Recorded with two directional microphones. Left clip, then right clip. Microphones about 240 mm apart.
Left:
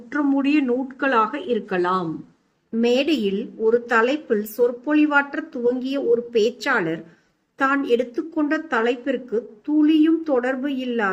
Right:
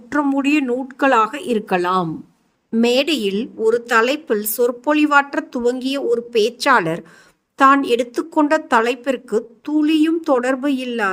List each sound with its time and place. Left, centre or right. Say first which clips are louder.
0.1 s a woman's voice: right 3 dB; right